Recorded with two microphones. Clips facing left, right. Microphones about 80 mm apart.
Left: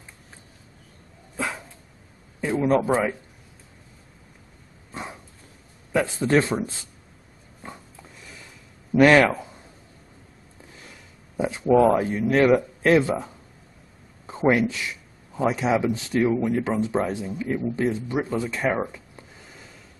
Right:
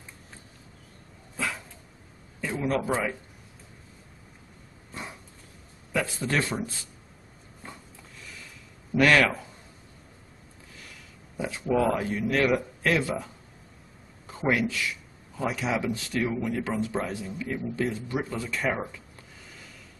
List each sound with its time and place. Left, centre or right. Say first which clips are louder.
2.4 s speech: left 7 dB; left
4.9 s dog: left 4 dB; left
5.9 s speech: left 7 dB; left
8.9 s a man's voice: left 5 dB; left
11.3 s speech: left 7 dB; left